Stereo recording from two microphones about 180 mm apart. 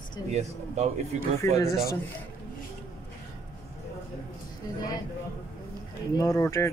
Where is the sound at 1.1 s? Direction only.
40° right (ahead or behind).